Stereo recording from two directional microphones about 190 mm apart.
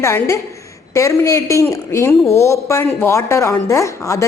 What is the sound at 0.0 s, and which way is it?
A woman's voice, 15° left (ahead or behind).